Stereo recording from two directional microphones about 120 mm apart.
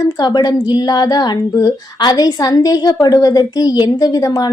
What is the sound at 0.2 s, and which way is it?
Speech, 35° left (ahead or behind).